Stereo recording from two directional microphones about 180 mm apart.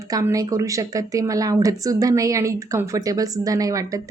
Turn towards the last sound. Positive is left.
turn(degrees=-20)  # may be behind; listen again after turning